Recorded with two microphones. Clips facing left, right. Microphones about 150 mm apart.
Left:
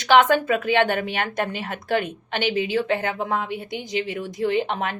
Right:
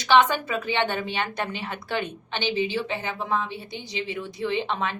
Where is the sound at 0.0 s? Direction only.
55° left (ahead or behind).